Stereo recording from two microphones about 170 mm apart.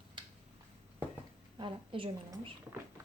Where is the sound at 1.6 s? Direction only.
30° right (ahead or behind).